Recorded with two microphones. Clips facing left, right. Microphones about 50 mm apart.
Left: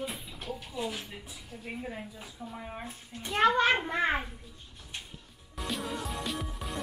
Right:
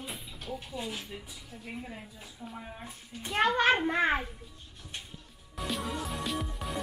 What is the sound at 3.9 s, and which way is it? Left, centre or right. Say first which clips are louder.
Speech: right 2 dB; centre.